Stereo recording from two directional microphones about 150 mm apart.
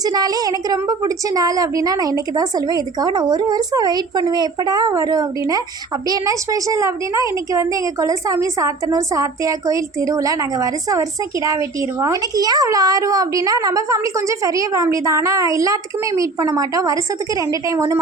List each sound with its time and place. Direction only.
0.0 s a woman's voice: 25° right (ahead or behind)